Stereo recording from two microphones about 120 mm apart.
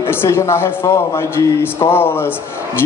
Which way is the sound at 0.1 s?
20° left (ahead or behind).